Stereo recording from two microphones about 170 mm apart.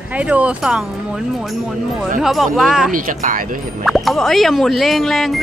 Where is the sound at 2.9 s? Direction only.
50° right (ahead or behind).